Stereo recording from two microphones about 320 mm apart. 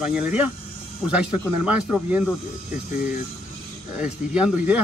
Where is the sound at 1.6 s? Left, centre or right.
Centre.